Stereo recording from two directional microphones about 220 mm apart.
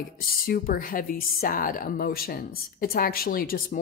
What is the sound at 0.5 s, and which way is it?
Speech, 40° left (ahead or behind).